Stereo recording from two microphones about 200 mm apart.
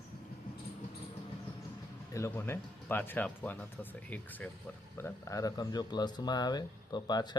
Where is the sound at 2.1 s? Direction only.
15° left (ahead or behind).